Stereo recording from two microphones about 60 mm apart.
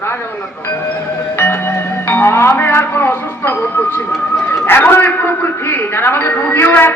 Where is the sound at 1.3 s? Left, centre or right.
Left.